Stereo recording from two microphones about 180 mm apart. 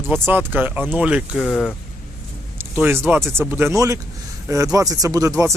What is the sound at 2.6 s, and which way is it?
Speech, 10° right (ahead or behind).